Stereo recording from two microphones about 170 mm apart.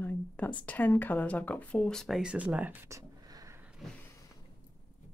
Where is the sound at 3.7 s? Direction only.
Centre (ahead or behind).